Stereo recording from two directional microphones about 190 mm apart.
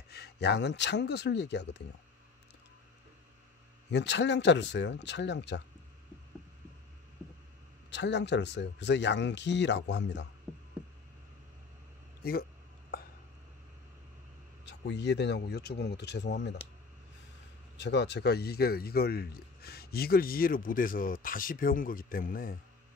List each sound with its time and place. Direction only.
0.1 s speech: 60° left (ahead or behind)
3.9 s speech: 65° left (ahead or behind)
7.9 s speech: 65° left (ahead or behind)
12.2 s speech: 55° left (ahead or behind)
12.9 s a sound: 50° left (ahead or behind)
14.6 s speech: 65° left (ahead or behind)
17.7 s speech: 65° left (ahead or behind); by 22.6 s 50° left (ahead or behind)